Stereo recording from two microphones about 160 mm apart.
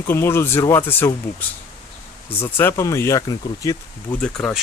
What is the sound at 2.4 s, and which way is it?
Speech, 15° left (ahead or behind).